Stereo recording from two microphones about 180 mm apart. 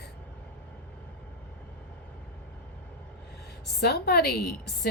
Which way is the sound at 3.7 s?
65° left (ahead or behind).